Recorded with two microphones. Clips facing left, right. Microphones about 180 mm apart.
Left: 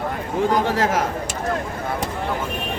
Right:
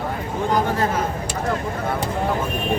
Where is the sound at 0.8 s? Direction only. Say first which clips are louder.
Left 2 dB; 90° left.